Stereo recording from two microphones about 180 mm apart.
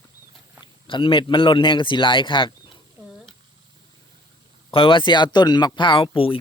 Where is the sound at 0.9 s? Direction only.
30° left (ahead or behind).